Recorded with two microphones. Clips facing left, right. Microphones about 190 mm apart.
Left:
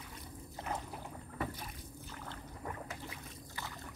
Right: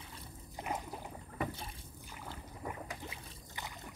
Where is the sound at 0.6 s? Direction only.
15° right (ahead or behind).